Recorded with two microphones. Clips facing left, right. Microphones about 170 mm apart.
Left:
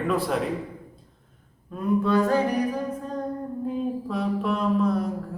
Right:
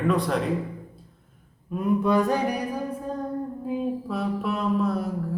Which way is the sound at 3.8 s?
5° right (ahead or behind).